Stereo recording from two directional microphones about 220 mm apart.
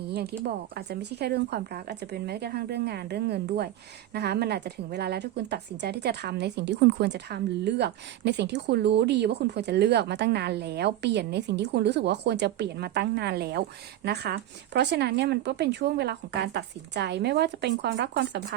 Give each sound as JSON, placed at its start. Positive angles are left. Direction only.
{"t": 0.4, "sound": "speech", "side_deg": -45}